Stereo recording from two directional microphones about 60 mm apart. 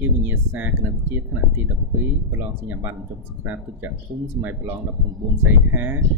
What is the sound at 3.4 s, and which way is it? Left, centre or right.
Speech, right.